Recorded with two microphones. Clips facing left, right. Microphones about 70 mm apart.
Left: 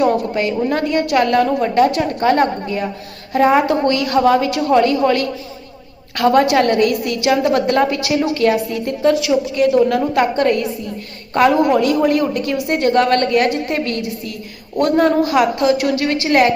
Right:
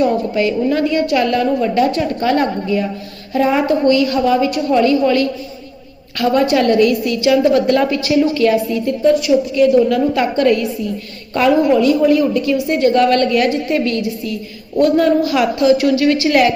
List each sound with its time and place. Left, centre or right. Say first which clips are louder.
0.0 s a woman's voice: right 1 dB; left
3.7 s a woman's voice: right 3 dB; left
9.6 s a woman's voice: right 1 dB; left
11.7 s a woman's voice: right 2 dB; left